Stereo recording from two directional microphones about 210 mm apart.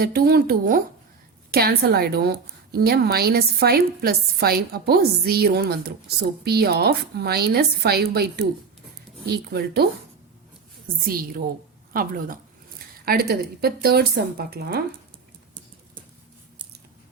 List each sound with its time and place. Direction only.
0.0 s a woman's voice: 50° right (ahead or behind)
11.9 s a woman's voice: 45° right (ahead or behind)